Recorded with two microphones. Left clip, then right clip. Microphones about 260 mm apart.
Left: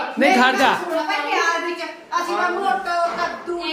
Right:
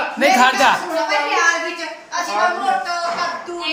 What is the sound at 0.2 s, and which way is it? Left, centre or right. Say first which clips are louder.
Speech: right 2 dB; centre.